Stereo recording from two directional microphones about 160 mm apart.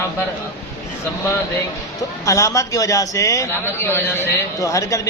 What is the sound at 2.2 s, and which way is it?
A man's voice, 20° left (ahead or behind).